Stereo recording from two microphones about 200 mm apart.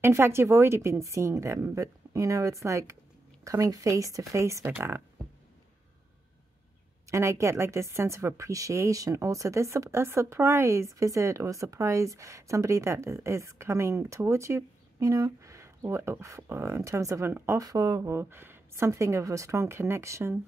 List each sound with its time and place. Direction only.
0.0 s a woman's voice: 10° right (ahead or behind)
7.1 s a woman's voice: 15° right (ahead or behind)